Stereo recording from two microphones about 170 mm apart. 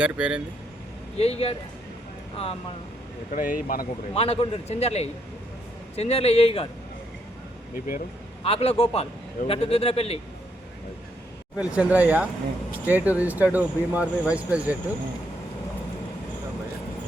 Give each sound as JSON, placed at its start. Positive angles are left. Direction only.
{"t": 0.0, "sound": "speech", "side_deg": -5}
{"t": 1.2, "sound": "speech", "side_deg": 35}
{"t": 3.3, "sound": "speech", "side_deg": 55}
{"t": 4.1, "sound": "speech", "side_deg": 35}
{"t": 8.4, "sound": "speech", "side_deg": 35}
{"t": 11.5, "sound": "speech", "side_deg": -5}